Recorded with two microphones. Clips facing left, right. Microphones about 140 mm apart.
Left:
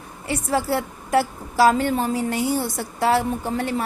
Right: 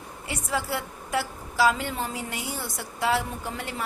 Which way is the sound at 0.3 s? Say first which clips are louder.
Left 7 dB; 35° left (ahead or behind).